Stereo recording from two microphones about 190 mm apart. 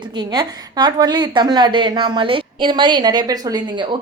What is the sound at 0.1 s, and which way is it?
A woman's voice, 20° right (ahead or behind).